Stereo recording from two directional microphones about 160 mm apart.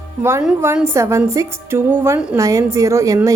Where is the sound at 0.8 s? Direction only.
15° right (ahead or behind).